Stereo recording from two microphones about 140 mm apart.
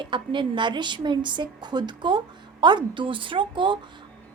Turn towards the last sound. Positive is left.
turn(degrees=-35)  # may be behind; listen again after turning